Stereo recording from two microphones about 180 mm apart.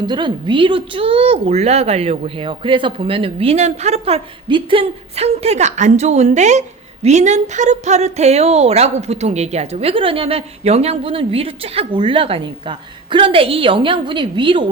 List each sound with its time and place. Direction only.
0.0 s a woman's voice: 25° right (ahead or behind)